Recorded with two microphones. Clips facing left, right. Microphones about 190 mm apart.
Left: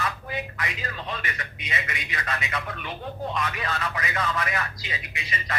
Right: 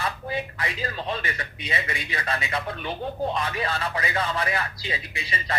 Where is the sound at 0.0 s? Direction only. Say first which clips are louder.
Right 2 dB; 30° right (ahead or behind).